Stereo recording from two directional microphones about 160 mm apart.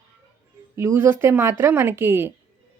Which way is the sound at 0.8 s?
15° right (ahead or behind).